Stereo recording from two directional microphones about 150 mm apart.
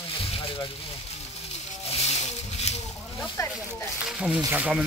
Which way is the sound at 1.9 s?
45° left (ahead or behind).